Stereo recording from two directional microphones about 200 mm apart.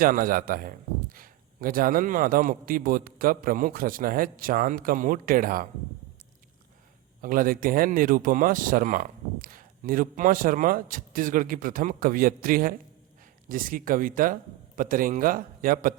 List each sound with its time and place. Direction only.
0.0 s speech: 45° right (ahead or behind)
7.2 s speech: 45° right (ahead or behind)